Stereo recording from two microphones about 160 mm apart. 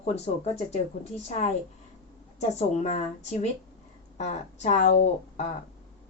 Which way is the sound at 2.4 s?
45° left (ahead or behind).